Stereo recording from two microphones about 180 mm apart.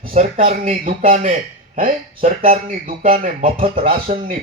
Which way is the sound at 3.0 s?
50° right (ahead or behind).